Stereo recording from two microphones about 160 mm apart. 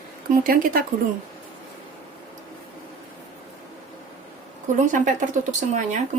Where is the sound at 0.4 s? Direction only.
65° right (ahead or behind).